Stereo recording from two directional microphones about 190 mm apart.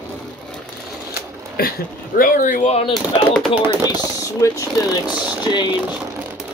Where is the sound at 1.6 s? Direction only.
55° left (ahead or behind); by 2.9 s 35° left (ahead or behind).